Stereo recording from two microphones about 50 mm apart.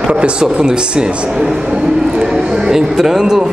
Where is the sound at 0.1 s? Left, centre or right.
Centre.